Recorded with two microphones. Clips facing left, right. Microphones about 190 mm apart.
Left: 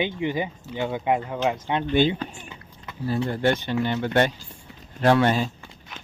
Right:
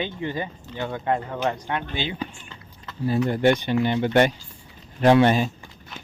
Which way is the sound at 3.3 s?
15° right (ahead or behind).